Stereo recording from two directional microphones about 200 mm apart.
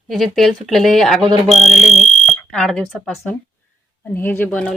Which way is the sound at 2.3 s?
5° left (ahead or behind).